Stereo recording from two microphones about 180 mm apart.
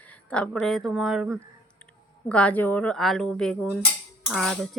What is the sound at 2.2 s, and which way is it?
Speech, 5° left (ahead or behind).